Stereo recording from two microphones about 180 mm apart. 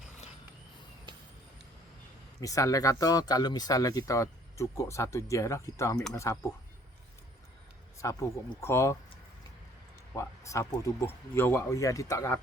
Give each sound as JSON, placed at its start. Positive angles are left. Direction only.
{"t": 2.4, "sound": "speech", "side_deg": 20}
{"t": 8.0, "sound": "speech", "side_deg": 15}
{"t": 10.2, "sound": "speech", "side_deg": 15}